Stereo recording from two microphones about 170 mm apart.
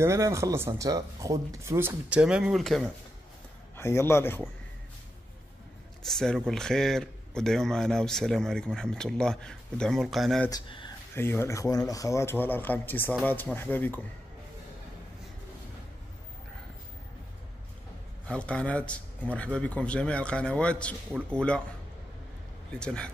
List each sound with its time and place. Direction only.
0.0 s speech: 15° right (ahead or behind); by 2.9 s centre (ahead or behind)
3.7 s a man's voice: 15° left (ahead or behind)
6.0 s speech: centre (ahead or behind)
10.5 s speech: 30° left (ahead or behind)
11.1 s a man's voice: 15° left (ahead or behind)
18.2 s a man's voice: 5° left (ahead or behind)
22.8 s speech: 5° left (ahead or behind)